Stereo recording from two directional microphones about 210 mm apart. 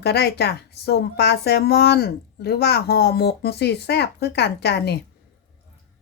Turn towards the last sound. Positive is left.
turn(degrees=50)  # may be behind; listen again after turning